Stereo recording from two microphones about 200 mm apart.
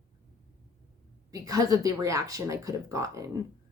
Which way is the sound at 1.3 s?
20° right (ahead or behind).